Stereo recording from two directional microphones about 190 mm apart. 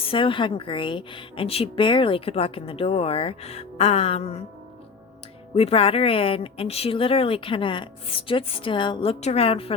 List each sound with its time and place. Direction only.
0.0 s a woman's voice: 30° left (ahead or behind)
5.5 s a woman's voice: 30° left (ahead or behind)